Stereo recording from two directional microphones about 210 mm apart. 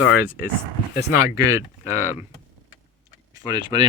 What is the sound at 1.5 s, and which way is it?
Speech, 15° right (ahead or behind).